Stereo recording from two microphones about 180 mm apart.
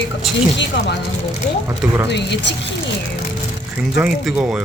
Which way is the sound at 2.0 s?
75° left (ahead or behind).